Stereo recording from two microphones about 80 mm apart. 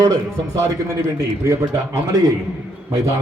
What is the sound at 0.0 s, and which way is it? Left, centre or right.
A man's voice, right.